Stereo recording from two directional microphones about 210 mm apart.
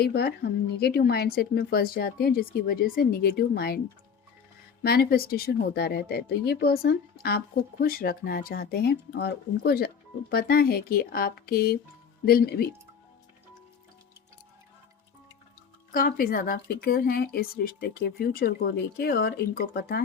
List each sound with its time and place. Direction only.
0.0 s speech: 50° left (ahead or behind)
4.8 s speech: 45° left (ahead or behind)
15.9 s speech: 40° left (ahead or behind)